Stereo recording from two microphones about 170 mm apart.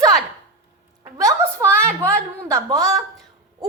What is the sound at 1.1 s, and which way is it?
A woman's voice, 15° right (ahead or behind).